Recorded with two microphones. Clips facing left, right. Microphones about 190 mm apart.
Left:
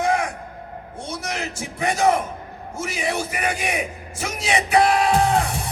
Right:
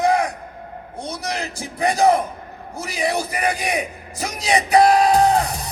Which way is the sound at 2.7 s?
35° right (ahead or behind).